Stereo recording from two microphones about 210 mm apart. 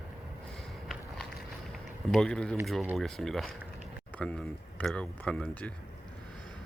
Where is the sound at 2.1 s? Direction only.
5° left (ahead or behind).